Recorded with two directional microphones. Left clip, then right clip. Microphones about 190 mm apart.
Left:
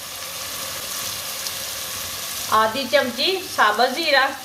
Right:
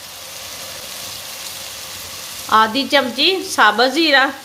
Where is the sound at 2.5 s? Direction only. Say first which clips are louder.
Right 4 dB; 55° right (ahead or behind).